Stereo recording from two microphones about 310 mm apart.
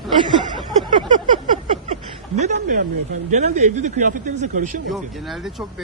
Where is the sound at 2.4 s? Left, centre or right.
Right.